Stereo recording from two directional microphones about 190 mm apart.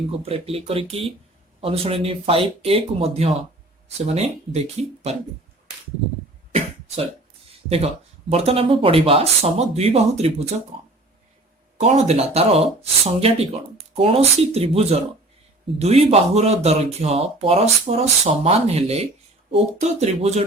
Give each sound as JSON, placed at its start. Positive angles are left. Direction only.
{"t": 0.2, "sound": "speech", "side_deg": -30}
{"t": 6.5, "sound": "cough", "side_deg": -35}
{"t": 8.3, "sound": "speech", "side_deg": -30}